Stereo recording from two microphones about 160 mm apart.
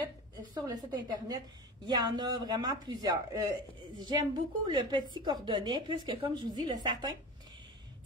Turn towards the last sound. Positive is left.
turn(degrees=-25)  # may be behind; listen again after turning